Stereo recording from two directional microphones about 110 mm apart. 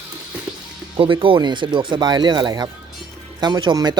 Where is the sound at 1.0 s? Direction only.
50° right (ahead or behind).